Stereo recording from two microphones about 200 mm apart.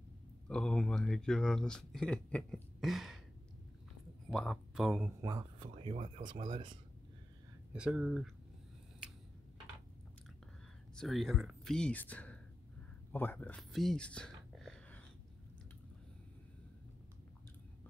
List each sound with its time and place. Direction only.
0.5 s speech: 5° left (ahead or behind)
4.3 s speech: centre (ahead or behind)
5.2 s speech: 20° right (ahead or behind)
5.9 s speech: 35° right (ahead or behind)
7.7 s speech: 5° right (ahead or behind)
11.0 s speech: centre (ahead or behind)